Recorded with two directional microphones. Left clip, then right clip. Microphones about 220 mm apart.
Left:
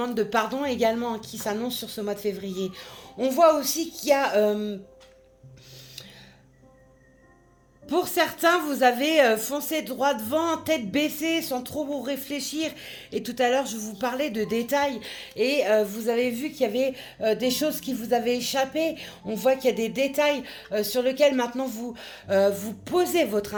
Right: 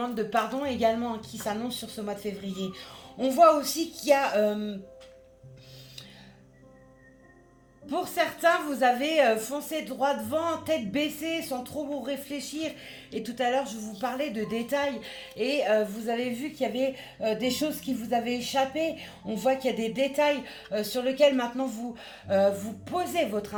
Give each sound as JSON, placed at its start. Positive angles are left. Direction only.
{"t": 0.0, "sound": "a woman's voice", "side_deg": 50}
{"t": 7.9, "sound": "a woman's voice", "side_deg": 50}